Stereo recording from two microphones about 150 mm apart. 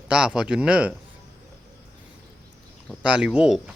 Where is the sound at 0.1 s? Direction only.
5° right (ahead or behind).